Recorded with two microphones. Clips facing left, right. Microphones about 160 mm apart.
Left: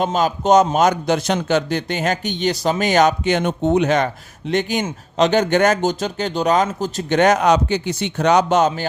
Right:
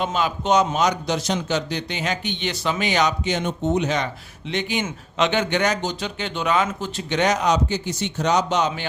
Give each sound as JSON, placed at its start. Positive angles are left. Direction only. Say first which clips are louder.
{"t": 0.0, "sound": "a man's voice", "louder": "left 5 dB", "side_deg": 40}